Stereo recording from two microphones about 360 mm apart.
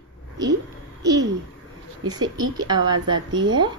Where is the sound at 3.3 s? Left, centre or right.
Right.